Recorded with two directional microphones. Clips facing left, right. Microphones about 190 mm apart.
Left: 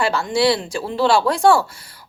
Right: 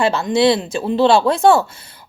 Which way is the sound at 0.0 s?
20° right (ahead or behind).